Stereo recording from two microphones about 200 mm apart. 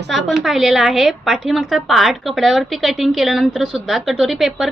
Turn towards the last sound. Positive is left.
turn(degrees=0)  # may be behind; listen again after turning